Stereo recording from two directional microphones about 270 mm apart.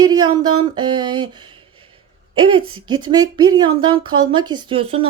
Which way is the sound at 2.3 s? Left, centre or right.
Centre.